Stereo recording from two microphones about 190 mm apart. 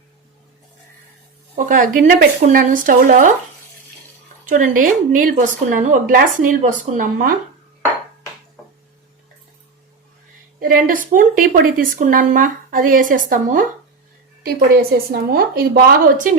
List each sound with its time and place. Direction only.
1.5 s speech: 45° right (ahead or behind)
4.4 s speech: 45° right (ahead or behind)
10.6 s speech: 45° right (ahead or behind)